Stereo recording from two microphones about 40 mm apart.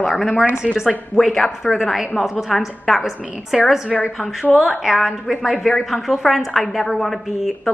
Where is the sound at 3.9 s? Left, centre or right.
Centre.